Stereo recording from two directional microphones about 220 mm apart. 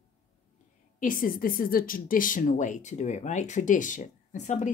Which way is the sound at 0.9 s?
35° left (ahead or behind).